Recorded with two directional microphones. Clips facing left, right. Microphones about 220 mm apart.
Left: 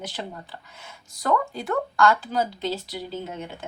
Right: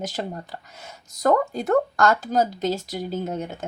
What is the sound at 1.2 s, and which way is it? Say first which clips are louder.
Speech: right 4 dB; 45° right (ahead or behind).